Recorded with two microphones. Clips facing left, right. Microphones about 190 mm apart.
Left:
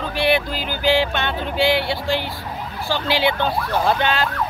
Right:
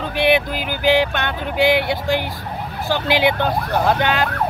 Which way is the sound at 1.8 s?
15° right (ahead or behind).